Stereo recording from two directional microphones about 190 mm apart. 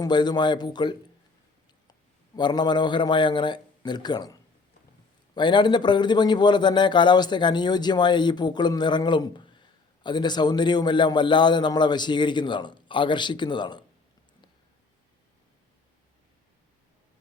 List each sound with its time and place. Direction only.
0.0 s a man's voice: 20° left (ahead or behind)